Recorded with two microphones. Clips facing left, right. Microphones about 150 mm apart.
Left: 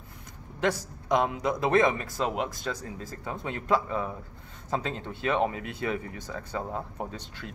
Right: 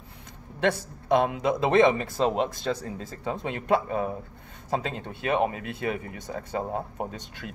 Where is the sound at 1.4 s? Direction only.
25° right (ahead or behind).